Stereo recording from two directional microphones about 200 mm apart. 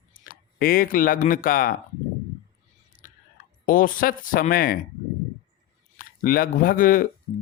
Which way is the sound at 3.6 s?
45° left (ahead or behind).